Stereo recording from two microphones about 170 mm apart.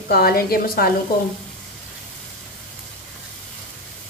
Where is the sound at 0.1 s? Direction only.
65° left (ahead or behind).